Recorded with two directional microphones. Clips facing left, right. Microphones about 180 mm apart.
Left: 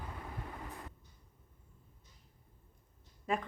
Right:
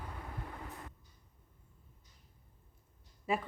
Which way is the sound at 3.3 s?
5° right (ahead or behind).